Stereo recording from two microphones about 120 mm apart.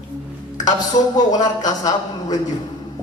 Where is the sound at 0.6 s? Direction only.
35° left (ahead or behind).